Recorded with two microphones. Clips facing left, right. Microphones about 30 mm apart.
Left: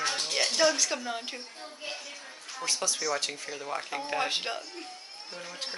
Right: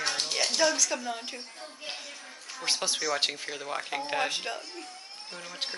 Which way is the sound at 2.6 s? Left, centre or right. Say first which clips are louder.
Right 1 dB; right.